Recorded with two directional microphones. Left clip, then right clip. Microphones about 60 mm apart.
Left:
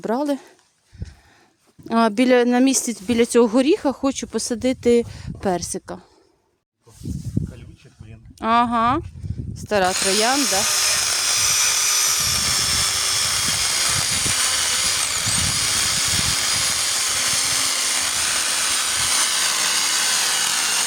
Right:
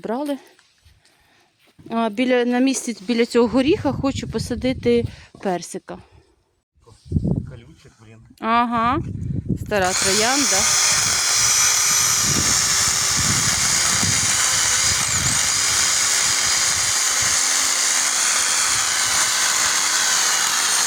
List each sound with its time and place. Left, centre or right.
0.1 s speech: left
2.3 s speech: left
2.6 s speech: left
5.1 s speech: left
5.6 s speech: left
8.4 s speech: centre
9.9 s drill: centre
19.8 s a sound: left
20.4 s wood: left